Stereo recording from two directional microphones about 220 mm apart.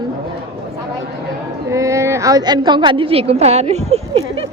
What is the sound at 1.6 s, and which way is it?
A woman's voice, 15° right (ahead or behind).